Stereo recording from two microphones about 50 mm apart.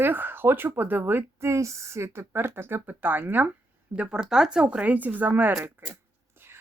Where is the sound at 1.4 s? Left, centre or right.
Right.